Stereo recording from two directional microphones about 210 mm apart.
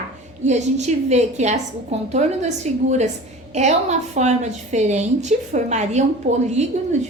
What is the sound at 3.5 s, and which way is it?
A woman's voice, 30° right (ahead or behind).